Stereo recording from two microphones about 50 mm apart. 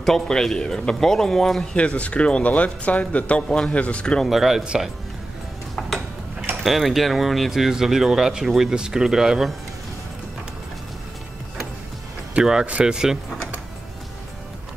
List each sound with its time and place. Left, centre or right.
0.0 s a man's voice: centre
1.8 s speech: left
4.2 s speech: centre
5.8 s a sound: centre
6.6 s speech: centre
12.4 s speech: right
12.8 s speech: centre